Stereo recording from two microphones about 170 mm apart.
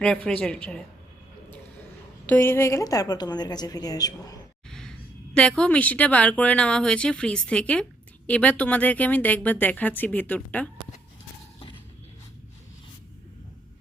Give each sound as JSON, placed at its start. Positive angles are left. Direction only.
{"t": 0.0, "sound": "a woman's voice", "side_deg": 5}
{"t": 2.2, "sound": "a woman's voice", "side_deg": 10}
{"t": 4.7, "sound": "speech", "side_deg": 5}